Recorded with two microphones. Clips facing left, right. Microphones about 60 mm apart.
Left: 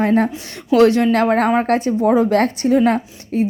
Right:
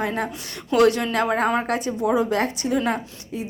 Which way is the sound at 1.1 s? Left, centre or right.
Left.